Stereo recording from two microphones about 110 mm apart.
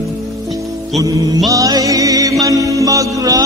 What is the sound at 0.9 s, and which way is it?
Music, 35° right (ahead or behind).